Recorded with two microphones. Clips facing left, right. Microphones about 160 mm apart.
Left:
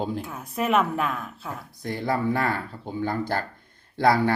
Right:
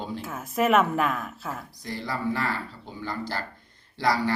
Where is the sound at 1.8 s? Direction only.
55° left (ahead or behind).